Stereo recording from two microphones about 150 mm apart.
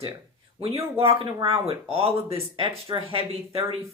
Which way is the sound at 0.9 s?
35° right (ahead or behind).